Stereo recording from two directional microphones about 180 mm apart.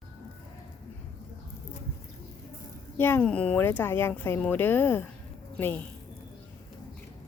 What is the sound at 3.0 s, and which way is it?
Speech, 10° left (ahead or behind).